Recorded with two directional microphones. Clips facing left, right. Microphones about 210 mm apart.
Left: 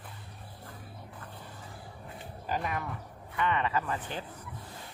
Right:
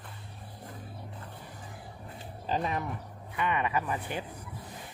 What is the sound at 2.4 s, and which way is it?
Speech, 25° right (ahead or behind).